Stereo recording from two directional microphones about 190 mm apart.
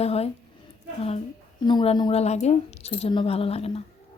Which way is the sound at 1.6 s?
25° left (ahead or behind).